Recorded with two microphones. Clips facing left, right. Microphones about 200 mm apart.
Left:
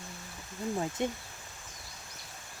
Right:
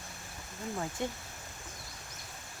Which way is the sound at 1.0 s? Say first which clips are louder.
Left 3 dB; 20° left (ahead or behind).